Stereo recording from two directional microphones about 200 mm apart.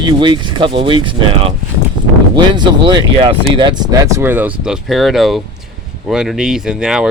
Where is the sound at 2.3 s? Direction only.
20° right (ahead or behind).